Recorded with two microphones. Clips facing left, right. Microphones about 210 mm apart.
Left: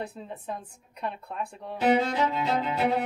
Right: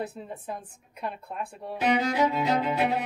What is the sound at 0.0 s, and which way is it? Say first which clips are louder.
A woman's voice: right 1 dB; 5° right (ahead or behind).